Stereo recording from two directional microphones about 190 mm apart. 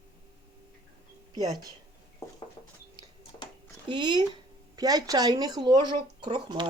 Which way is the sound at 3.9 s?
25° right (ahead or behind).